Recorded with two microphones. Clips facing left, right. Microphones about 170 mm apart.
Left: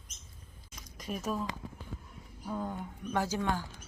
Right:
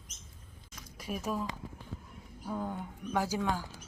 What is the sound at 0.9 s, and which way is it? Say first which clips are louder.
Speech: even; 5° right (ahead or behind).